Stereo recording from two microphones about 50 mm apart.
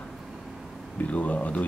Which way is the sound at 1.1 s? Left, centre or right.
Left.